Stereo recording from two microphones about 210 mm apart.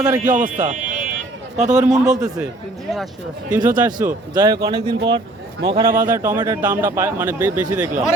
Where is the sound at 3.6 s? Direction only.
40° right (ahead or behind).